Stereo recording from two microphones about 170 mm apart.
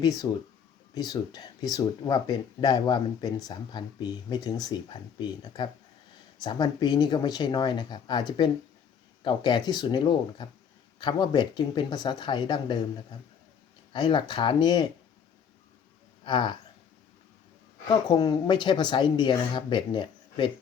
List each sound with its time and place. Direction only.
0.0 s speech: 20° left (ahead or behind)
16.2 s speech: 30° left (ahead or behind)
17.8 s speech: 25° left (ahead or behind)